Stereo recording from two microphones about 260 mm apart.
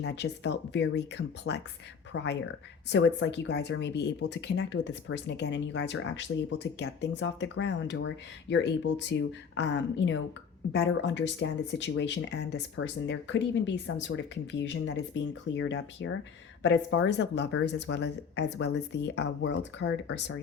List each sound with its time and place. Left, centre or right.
0.0 s speech: left